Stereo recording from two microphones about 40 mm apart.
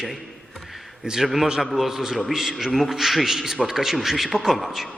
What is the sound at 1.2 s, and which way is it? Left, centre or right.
A man's voice, centre.